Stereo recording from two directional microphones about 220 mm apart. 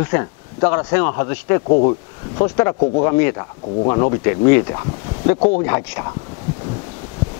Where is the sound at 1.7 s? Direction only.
30° left (ahead or behind).